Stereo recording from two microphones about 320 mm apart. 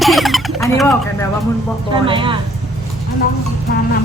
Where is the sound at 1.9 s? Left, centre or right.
Centre.